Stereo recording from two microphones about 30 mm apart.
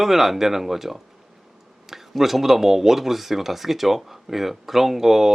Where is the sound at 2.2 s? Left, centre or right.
Centre.